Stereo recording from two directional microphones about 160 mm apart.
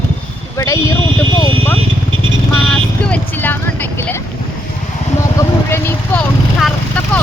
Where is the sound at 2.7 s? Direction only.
5° left (ahead or behind).